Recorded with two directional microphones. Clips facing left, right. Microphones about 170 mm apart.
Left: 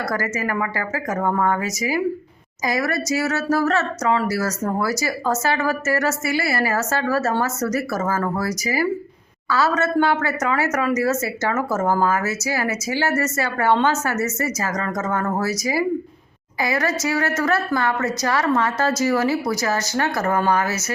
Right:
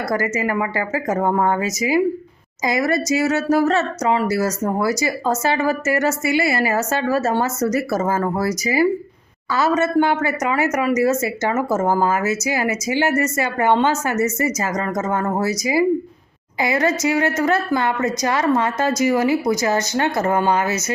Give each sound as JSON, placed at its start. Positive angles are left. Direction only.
{"t": 0.1, "sound": "speech", "side_deg": -20}